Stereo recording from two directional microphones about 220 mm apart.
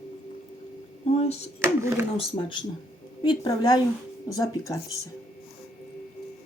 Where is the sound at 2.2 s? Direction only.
20° left (ahead or behind).